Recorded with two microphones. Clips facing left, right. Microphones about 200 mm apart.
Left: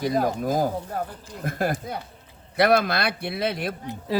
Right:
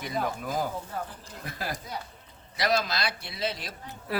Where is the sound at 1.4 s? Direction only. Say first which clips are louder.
Left 10 dB; 50° left (ahead or behind).